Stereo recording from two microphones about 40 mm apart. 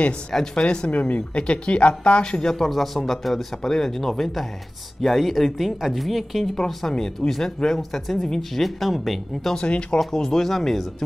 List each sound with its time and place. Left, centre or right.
0.6 s speech: left
0.9 s speech: left
2.4 s speech: centre
6.4 s speech: centre
9.6 s speech: left
9.9 s speech: centre